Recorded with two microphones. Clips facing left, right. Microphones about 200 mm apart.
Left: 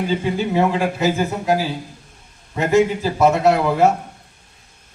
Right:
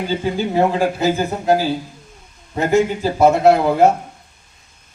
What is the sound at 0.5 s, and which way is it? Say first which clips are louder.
A man's voice: right 3 dB; 30° right (ahead or behind).